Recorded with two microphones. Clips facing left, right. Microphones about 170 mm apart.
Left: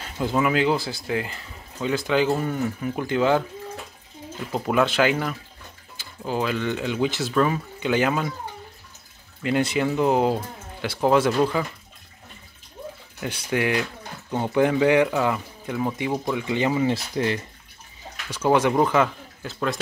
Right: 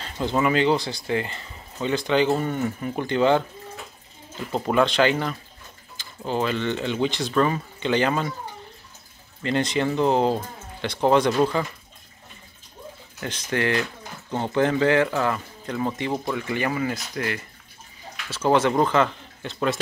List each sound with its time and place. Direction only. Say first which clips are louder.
0.0 s speech: even; 5° left (ahead or behind)
4.5 s speech: right 1 dB; 5° left (ahead or behind)
9.4 s speech: left 1 dB; 10° left (ahead or behind)
13.2 s speech: left 1 dB; 10° left (ahead or behind)
16.3 s speech: left 3 dB; 20° left (ahead or behind)
18.3 s speech: even; 10° left (ahead or behind)